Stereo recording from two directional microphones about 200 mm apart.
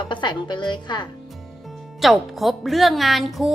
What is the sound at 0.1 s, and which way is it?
Speech, 25° left (ahead or behind).